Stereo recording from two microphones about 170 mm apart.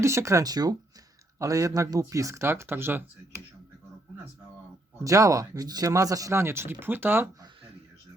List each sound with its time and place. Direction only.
0.0 s speech: 15° right (ahead or behind)
5.0 s speech: 20° right (ahead or behind)